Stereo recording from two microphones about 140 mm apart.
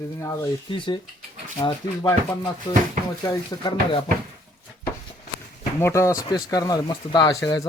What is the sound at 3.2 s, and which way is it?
Speech, 25° left (ahead or behind).